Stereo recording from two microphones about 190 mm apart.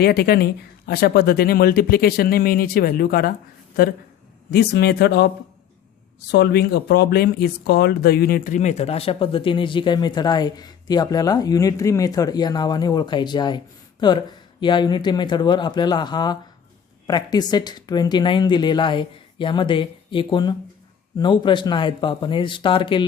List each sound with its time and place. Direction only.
0.0 s speech: 55° left (ahead or behind); by 13.6 s 25° left (ahead or behind)
14.6 s speech: 25° left (ahead or behind)